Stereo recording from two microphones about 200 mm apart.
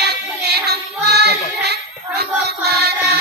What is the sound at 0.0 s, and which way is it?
Child singing, 55° right (ahead or behind).